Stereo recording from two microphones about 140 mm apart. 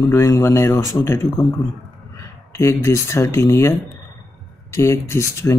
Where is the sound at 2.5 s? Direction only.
20° left (ahead or behind).